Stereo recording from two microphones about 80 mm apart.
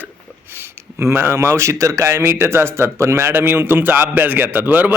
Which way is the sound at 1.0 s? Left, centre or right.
Right.